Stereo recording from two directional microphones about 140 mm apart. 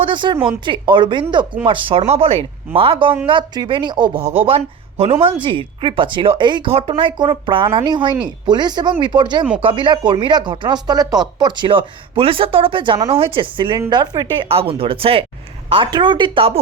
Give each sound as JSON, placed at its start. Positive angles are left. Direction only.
{"t": 0.0, "sound": "speech", "side_deg": -35}
{"t": 14.4, "sound": "speech", "side_deg": -40}